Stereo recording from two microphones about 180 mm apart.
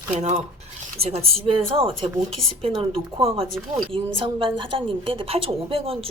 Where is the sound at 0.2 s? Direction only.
40° right (ahead or behind).